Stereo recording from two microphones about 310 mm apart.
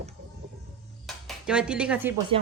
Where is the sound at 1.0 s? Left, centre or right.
Centre.